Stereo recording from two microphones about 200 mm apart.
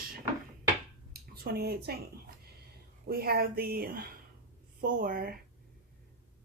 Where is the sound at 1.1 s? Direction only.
50° right (ahead or behind).